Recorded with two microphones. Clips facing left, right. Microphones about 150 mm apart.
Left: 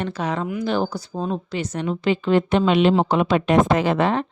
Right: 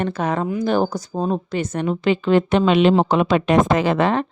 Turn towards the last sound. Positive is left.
turn(degrees=-75)  # may be behind; listen again after turning